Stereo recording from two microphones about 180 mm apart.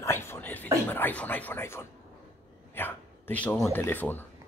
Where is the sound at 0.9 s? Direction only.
10° left (ahead or behind).